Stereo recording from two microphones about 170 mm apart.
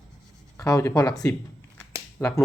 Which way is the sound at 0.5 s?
15° left (ahead or behind).